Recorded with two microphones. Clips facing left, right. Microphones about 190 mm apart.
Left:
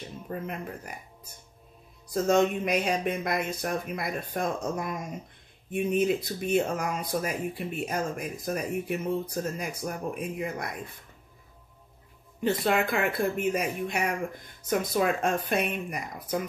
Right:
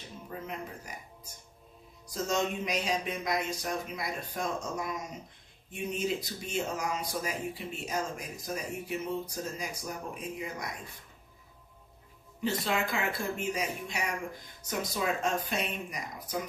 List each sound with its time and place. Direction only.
0.3 s speech: 55° left (ahead or behind)
2.0 s speech: 55° left (ahead or behind)
12.4 s speech: 60° left (ahead or behind)